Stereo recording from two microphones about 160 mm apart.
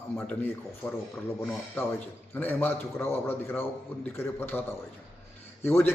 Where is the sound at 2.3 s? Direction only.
10° left (ahead or behind).